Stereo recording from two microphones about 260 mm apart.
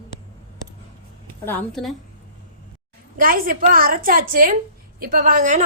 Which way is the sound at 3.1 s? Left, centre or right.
Right.